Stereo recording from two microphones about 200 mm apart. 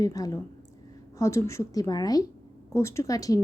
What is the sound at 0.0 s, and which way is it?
A woman's voice, 15° left (ahead or behind).